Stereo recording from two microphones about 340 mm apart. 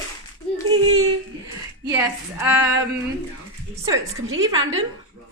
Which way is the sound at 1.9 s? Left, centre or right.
Centre.